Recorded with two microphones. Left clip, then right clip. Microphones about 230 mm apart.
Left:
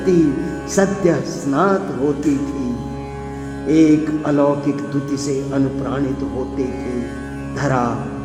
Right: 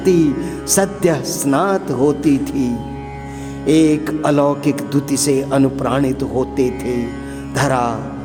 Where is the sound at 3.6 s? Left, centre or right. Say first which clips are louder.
Even; right.